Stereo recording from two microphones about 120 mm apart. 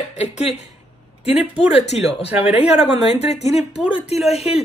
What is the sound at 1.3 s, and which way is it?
Speech, 55° left (ahead or behind).